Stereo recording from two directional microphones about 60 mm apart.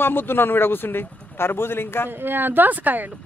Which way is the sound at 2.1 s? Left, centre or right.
Right.